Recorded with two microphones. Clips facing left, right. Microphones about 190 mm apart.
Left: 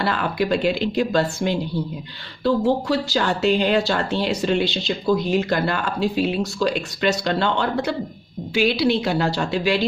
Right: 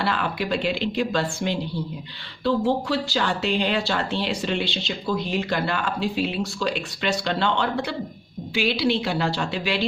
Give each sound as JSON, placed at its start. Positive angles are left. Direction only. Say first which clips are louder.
{"t": 0.0, "sound": "speech", "louder": "left 3 dB", "side_deg": 45}